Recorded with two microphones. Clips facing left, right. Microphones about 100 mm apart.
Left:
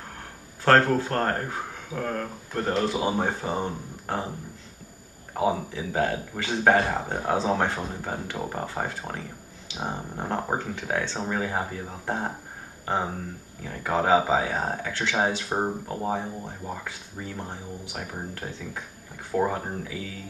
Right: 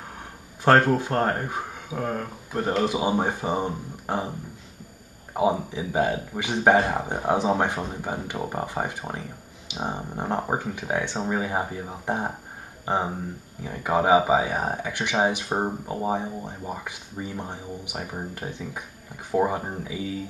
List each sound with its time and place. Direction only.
0.7 s speech: 15° right (ahead or behind)
5.3 s speech: 15° right (ahead or behind)